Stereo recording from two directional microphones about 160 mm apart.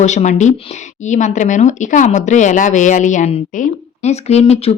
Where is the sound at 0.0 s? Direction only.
45° left (ahead or behind).